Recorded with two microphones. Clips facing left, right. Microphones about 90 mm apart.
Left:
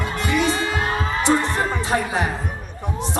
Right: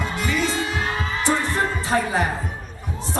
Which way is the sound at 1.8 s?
20° left (ahead or behind).